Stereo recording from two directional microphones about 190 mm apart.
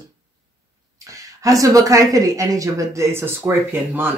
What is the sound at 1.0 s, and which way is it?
Speech, 20° right (ahead or behind).